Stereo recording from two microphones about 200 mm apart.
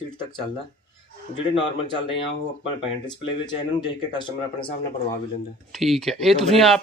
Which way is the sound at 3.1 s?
20° left (ahead or behind).